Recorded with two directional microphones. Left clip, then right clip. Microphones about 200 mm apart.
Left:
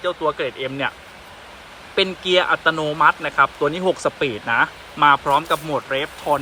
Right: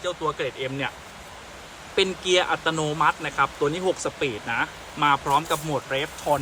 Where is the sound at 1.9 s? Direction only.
Centre (ahead or behind).